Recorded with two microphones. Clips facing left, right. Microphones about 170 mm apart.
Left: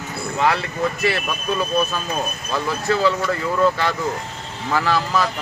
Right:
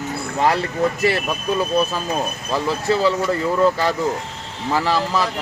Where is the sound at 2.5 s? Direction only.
35° right (ahead or behind).